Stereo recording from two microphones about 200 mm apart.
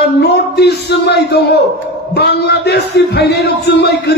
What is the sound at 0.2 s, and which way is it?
A man's voice, 55° left (ahead or behind).